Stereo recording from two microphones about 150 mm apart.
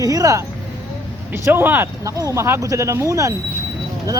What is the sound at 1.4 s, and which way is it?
Speech, 15° right (ahead or behind).